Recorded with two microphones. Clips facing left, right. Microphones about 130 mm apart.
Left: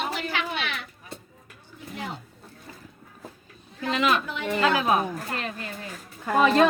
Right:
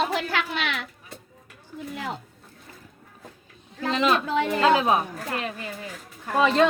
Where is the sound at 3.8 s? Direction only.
30° right (ahead or behind).